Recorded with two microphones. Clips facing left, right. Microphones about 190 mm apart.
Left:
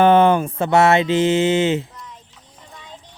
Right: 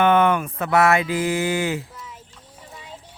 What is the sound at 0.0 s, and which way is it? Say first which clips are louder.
Mantra: left 4 dB; 30° left (ahead or behind).